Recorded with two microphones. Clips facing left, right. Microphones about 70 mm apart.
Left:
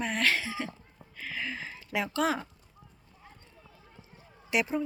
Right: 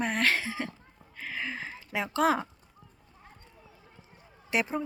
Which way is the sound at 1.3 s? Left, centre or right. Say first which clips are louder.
Right 1 dB; right.